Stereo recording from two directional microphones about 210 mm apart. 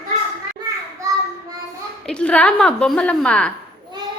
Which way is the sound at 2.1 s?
5° left (ahead or behind).